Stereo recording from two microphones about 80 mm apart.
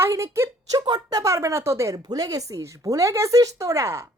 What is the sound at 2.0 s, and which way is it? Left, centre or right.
Speech, right.